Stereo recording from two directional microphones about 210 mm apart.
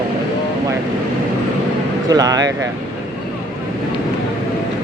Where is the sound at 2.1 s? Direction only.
20° right (ahead or behind).